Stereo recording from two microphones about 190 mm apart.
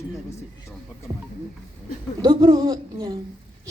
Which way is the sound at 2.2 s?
20° right (ahead or behind).